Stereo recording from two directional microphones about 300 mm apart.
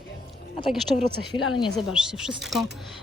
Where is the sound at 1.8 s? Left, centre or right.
Centre.